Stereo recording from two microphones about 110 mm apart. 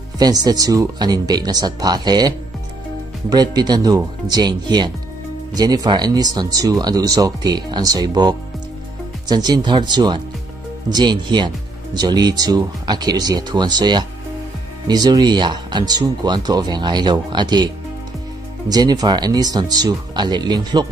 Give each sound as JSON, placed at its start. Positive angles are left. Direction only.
{"t": 0.2, "sound": "speech", "side_deg": -35}
{"t": 18.7, "sound": "speech", "side_deg": -35}